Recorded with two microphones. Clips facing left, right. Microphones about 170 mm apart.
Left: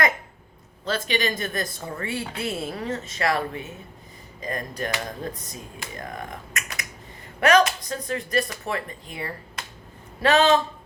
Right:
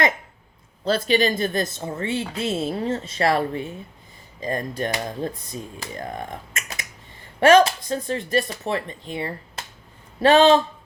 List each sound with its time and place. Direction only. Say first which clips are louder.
0.9 s a woman's voice: right 6 dB; 35° right (ahead or behind)